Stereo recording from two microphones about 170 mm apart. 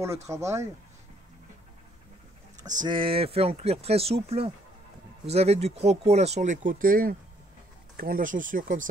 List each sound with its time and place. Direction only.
0.0 s speech: 15° right (ahead or behind)
2.8 s speech: 30° right (ahead or behind); by 8.8 s 50° right (ahead or behind)